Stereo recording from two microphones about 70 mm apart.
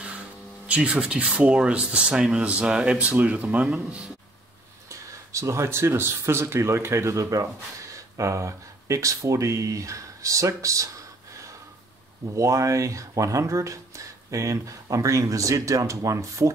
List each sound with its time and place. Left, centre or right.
0.7 s speech: centre
4.8 s speech: right
12.4 s speech: right